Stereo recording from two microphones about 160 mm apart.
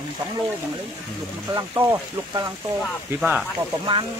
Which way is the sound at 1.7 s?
20° right (ahead or behind).